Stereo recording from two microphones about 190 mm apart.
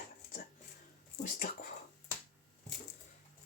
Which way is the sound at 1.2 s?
45° left (ahead or behind).